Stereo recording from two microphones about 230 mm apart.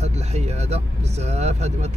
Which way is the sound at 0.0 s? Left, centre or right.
Right.